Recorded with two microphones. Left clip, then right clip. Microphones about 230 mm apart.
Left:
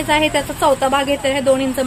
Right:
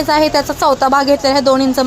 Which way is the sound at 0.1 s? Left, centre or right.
Centre.